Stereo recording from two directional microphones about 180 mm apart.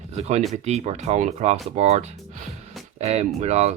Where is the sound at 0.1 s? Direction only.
35° right (ahead or behind).